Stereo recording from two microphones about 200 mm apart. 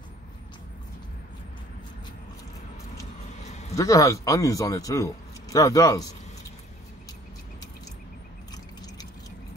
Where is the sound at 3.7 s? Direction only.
15° left (ahead or behind).